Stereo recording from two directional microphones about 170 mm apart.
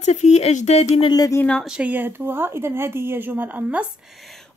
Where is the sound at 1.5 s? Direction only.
Centre (ahead or behind).